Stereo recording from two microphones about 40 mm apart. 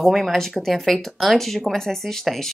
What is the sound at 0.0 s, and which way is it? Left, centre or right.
A woman's voice, centre.